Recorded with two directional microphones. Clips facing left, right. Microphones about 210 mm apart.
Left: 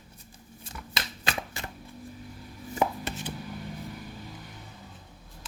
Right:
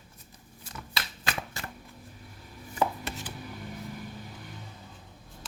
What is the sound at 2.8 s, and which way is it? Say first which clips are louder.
Chopping: left 1 dB; 20° left (ahead or behind).